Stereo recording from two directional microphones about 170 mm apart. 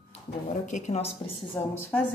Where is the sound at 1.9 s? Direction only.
10° left (ahead or behind).